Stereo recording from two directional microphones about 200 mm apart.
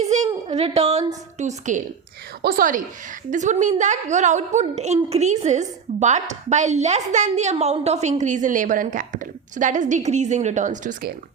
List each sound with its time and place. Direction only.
0.0 s a woman's voice: 35° right (ahead or behind)